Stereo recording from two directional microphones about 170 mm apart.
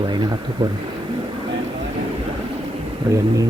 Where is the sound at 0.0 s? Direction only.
25° right (ahead or behind).